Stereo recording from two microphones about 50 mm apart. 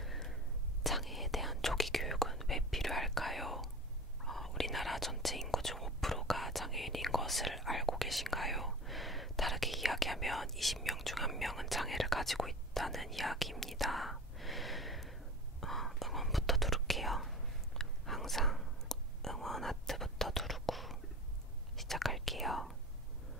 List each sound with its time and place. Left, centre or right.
0.0 s whispering: centre